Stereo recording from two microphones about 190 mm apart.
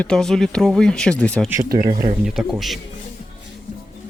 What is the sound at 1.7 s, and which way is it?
Speech, 50° right (ahead or behind).